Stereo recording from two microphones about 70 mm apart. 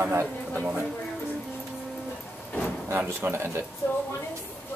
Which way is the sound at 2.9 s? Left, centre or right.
Right.